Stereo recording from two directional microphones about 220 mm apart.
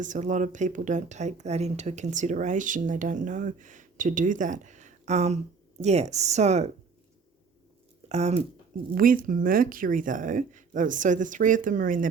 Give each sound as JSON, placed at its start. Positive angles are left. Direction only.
{"t": 0.0, "sound": "speech", "side_deg": -35}
{"t": 8.0, "sound": "speech", "side_deg": -30}